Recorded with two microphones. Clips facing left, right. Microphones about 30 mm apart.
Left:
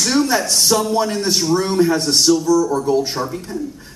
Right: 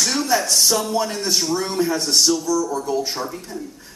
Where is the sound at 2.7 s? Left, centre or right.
Left.